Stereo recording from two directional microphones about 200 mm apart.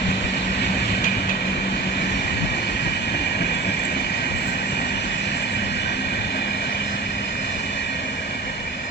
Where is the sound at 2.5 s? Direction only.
55° left (ahead or behind).